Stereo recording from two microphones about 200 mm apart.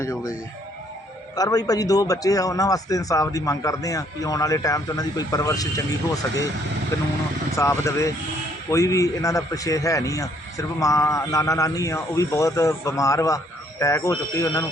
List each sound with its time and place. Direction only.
0.0 s a man's voice: 15° left (ahead or behind)
1.4 s a man's voice: 20° left (ahead or behind)
7.5 s a man's voice: 15° left (ahead or behind)